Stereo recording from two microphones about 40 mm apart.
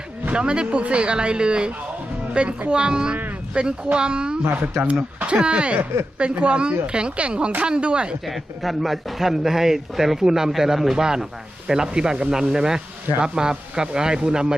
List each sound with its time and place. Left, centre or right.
0.3 s a woman's voice: right
4.4 s speech: right
5.2 s a woman's voice: right
8.2 s a woman's voice: centre; by 14.5 s right